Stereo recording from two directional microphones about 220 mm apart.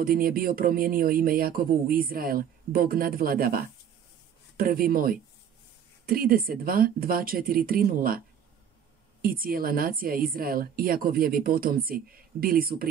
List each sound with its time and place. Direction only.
0.0 s speech: 40° right (ahead or behind)
9.2 s speech: 40° right (ahead or behind)